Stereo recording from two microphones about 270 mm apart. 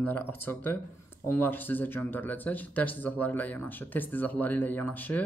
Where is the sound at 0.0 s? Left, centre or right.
Centre.